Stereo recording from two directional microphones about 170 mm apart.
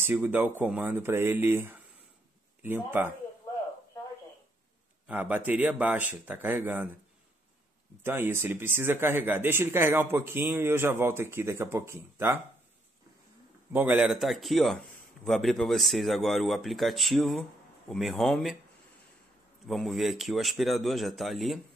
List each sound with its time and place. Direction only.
0.0 s speech: 15° right (ahead or behind)
5.0 s speech: 10° right (ahead or behind)
8.0 s speech: 15° right (ahead or behind)
13.7 s speech: 10° right (ahead or behind)
19.6 s speech: centre (ahead or behind)